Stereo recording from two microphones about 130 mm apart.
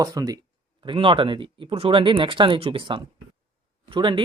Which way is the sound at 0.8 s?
40° right (ahead or behind).